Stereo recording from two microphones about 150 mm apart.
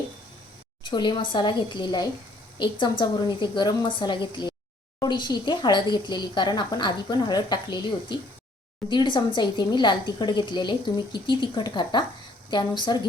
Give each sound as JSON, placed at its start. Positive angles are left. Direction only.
{"t": 0.9, "sound": "a woman's voice", "side_deg": 30}